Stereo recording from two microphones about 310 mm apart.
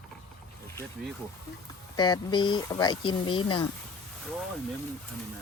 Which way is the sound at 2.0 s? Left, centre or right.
Centre.